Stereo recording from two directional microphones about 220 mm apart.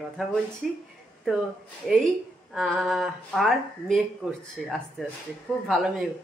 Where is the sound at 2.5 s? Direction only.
Centre (ahead or behind).